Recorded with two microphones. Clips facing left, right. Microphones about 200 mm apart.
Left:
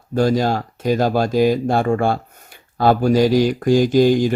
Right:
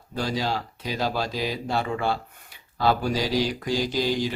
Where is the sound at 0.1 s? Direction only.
50° left (ahead or behind).